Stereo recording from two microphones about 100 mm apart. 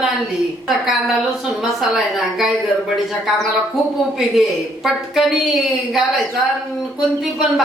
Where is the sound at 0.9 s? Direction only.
Centre (ahead or behind).